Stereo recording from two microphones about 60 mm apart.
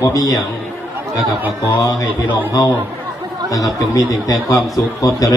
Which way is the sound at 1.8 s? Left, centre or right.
Left.